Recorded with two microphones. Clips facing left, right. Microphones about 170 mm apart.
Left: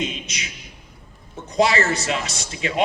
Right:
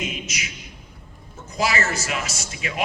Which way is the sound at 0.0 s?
30° left (ahead or behind).